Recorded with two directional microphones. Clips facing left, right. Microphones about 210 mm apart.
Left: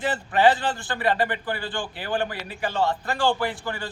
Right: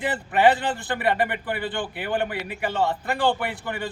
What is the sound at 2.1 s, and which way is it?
A man's voice, 20° right (ahead or behind).